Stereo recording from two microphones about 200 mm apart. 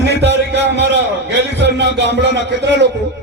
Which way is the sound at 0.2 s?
60° right (ahead or behind).